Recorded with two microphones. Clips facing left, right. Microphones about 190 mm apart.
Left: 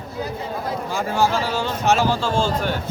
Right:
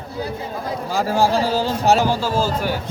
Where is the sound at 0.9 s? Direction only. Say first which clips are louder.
Right 3 dB; 35° right (ahead or behind).